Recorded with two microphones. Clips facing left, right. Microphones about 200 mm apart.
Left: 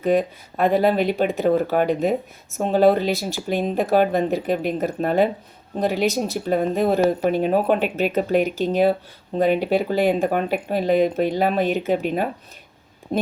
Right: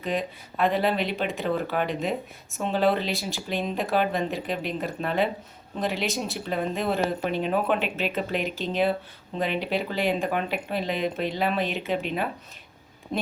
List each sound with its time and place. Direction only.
0.0 s speech: 45° left (ahead or behind)